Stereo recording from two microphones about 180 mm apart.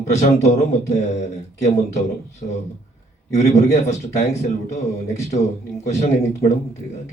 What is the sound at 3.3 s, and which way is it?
Speech, 40° left (ahead or behind).